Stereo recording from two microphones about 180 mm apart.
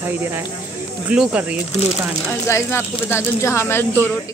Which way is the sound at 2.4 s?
15° left (ahead or behind).